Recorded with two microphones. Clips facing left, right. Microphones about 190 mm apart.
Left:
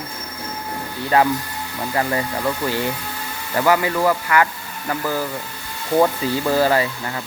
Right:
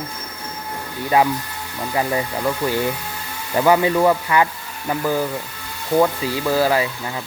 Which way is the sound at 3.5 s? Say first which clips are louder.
Right 3 dB; 20° right (ahead or behind).